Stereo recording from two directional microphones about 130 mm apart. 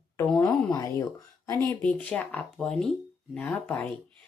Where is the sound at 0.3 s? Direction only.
30° left (ahead or behind).